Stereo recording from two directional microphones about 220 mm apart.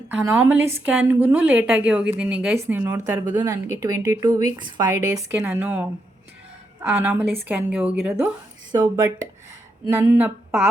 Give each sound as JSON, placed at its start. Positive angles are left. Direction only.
{"t": 0.1, "sound": "a woman's voice", "side_deg": -10}